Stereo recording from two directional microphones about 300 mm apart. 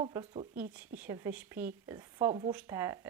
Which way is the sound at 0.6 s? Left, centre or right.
Centre.